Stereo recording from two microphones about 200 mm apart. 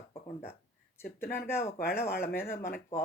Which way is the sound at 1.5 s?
10° left (ahead or behind).